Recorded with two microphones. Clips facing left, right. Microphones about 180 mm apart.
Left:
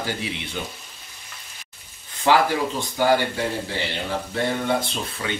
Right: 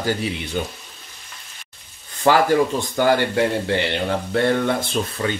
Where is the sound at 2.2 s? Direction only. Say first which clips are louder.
Right 3 dB; 45° right (ahead or behind); by 4.4 s 60° right (ahead or behind).